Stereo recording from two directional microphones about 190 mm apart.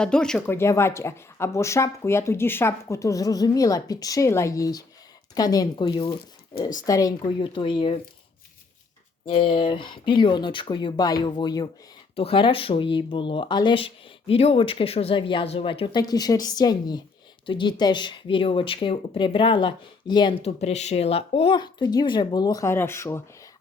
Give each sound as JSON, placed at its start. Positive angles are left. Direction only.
{"t": 0.0, "sound": "speech", "side_deg": 5}
{"t": 9.2, "sound": "speech", "side_deg": 25}